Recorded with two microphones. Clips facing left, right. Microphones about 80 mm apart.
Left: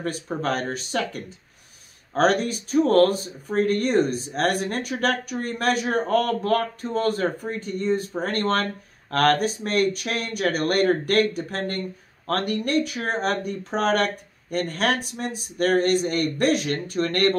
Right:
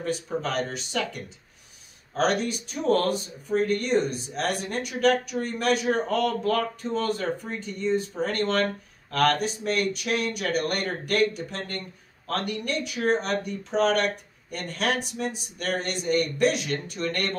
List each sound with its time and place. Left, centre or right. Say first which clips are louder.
0.0 s speech: left 1 dB; left